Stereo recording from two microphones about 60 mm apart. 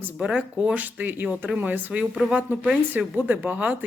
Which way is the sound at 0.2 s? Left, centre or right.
Centre.